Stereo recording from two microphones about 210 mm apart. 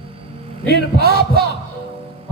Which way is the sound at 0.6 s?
50° right (ahead or behind).